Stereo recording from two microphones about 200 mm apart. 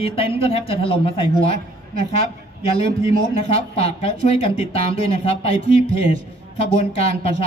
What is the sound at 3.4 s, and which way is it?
Speech, 30° left (ahead or behind).